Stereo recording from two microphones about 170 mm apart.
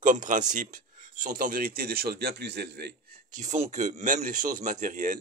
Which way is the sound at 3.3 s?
45° right (ahead or behind).